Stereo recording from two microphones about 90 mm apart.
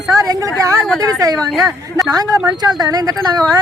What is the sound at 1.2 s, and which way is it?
Speech, 40° right (ahead or behind).